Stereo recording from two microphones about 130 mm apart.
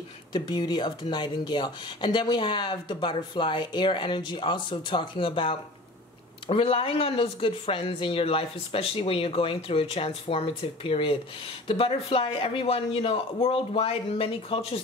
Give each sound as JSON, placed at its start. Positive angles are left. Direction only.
{"t": 0.3, "sound": "speech", "side_deg": 35}